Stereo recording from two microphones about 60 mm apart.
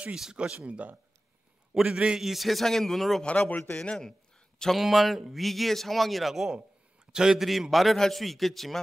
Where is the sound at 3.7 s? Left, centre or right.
Centre.